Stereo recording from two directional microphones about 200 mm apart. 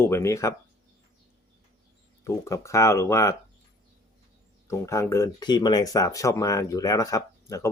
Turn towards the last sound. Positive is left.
turn(degrees=15)  # may be behind; listen again after turning